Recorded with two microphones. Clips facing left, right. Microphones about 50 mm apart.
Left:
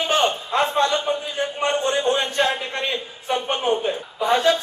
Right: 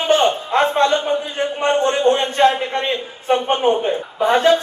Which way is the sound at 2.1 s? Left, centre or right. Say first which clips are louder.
Right 8 dB; right.